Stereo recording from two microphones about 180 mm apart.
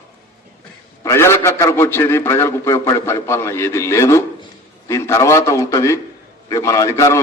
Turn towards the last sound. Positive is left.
turn(degrees=15)  # may be behind; listen again after turning